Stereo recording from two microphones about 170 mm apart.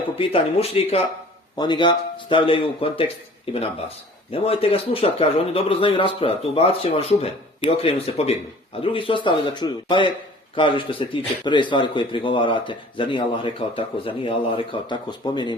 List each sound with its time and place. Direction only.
0.2 s speech: 35° left (ahead or behind)
1.5 s speech: 25° left (ahead or behind)